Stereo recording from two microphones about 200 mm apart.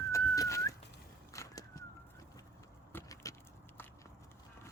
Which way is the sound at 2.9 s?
15° left (ahead or behind).